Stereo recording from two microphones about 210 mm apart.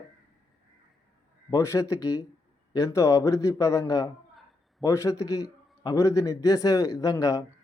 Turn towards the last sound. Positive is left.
turn(degrees=15)  # may be behind; listen again after turning